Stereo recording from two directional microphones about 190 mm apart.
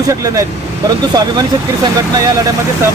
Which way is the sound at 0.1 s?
20° right (ahead or behind).